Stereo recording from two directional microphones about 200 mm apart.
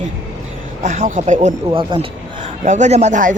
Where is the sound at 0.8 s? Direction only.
40° right (ahead or behind).